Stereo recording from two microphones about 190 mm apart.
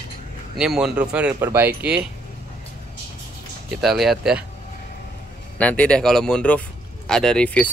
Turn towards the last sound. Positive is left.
turn(degrees=5)  # may be behind; listen again after turning